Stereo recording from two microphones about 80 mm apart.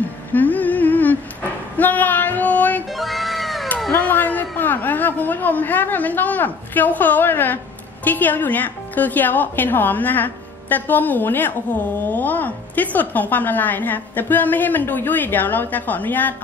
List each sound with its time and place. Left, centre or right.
0.3 s humming: left
2.9 s music: centre
4.0 s a woman's voice: left